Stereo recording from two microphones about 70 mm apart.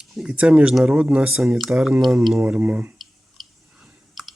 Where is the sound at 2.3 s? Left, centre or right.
Right.